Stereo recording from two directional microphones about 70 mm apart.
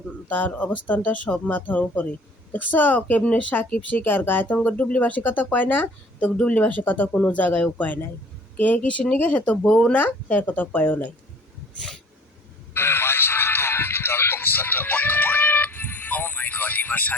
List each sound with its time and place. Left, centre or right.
0.3 s speech: left
12.7 s music: left